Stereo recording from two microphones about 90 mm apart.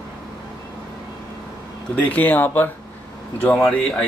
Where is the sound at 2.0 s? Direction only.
20° left (ahead or behind).